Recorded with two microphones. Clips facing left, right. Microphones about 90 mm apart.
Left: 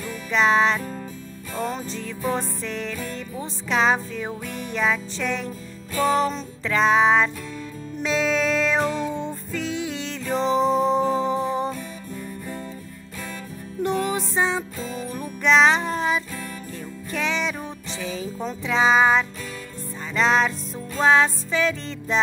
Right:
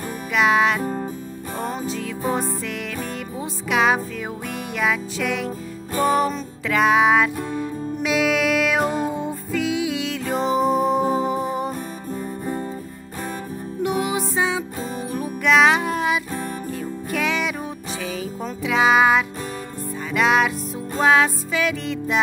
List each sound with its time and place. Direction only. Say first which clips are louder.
0.3 s music: right 1 dB; 10° right (ahead or behind)
3.3 s music: right 2 dB; 10° right (ahead or behind)
6.7 s music: right 1 dB; 10° right (ahead or behind)
8.8 s music: right 2 dB; 45° right (ahead or behind)
9.1 s music: right 4 dB; 10° right (ahead or behind)
13.8 s music: right 1 dB; 5° right (ahead or behind)